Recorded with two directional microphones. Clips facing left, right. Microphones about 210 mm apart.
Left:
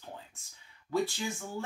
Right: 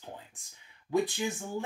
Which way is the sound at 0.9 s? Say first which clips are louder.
Right 3 dB; 15° right (ahead or behind).